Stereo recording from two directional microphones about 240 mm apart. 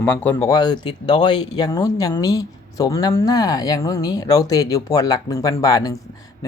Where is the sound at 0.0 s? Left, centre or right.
Centre.